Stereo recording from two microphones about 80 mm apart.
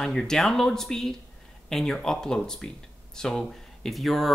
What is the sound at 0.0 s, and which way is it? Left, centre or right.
Speech, centre.